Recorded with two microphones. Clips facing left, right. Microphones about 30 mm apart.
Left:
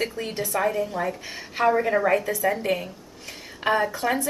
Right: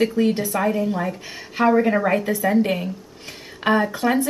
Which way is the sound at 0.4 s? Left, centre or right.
Centre.